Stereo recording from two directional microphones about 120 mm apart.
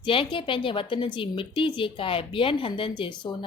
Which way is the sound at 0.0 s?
45° left (ahead or behind).